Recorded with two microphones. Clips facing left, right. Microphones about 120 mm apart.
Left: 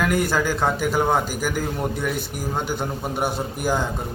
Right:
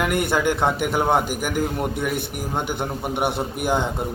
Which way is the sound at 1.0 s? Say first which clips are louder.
Right 1 dB; 10° right (ahead or behind).